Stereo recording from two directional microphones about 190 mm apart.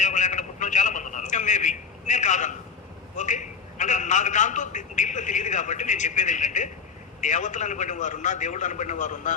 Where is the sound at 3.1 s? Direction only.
40° left (ahead or behind).